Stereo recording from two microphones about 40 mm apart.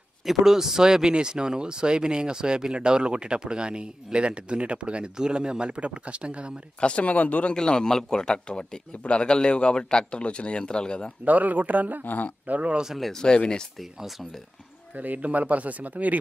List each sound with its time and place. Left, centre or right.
0.2 s speech: centre; by 6.5 s right
6.8 s a man's voice: left
7.1 s speech: left
7.5 s a man's voice: centre
11.2 s speech: right
12.0 s speech: left
12.4 s speech: right
13.1 s speech: centre
15.0 s speech: right